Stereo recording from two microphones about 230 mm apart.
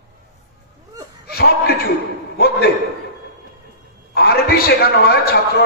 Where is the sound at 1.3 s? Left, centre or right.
Left.